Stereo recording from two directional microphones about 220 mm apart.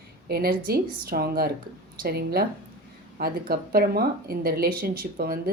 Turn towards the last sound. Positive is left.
turn(degrees=-45)  # may be behind; listen again after turning